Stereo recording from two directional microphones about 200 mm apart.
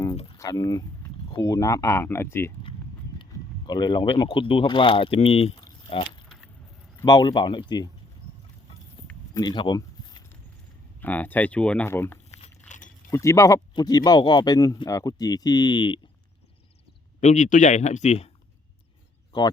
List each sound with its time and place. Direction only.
0.3 s speech: 15° left (ahead or behind)
3.3 s a sound: 15° left (ahead or behind)
3.7 s speech: 20° left (ahead or behind)
5.6 s a sound: 25° left (ahead or behind)
6.2 s keys jangling: centre (ahead or behind)
7.0 s speech: 20° left (ahead or behind)
9.3 s a sound: 20° left (ahead or behind)
11.0 s speech: 10° left (ahead or behind)
12.4 s biting: 40° left (ahead or behind)
13.1 s speech: 15° left (ahead or behind)
17.2 s speech: 35° left (ahead or behind)